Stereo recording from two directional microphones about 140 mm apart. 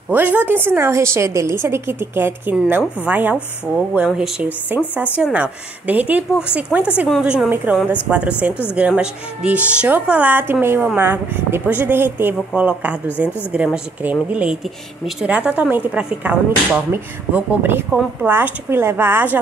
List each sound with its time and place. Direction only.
0.1 s a woman's voice: 15° right (ahead or behind)